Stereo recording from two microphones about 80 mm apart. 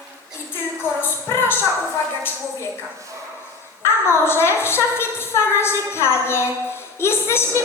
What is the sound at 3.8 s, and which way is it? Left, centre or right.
A woman's voice, left.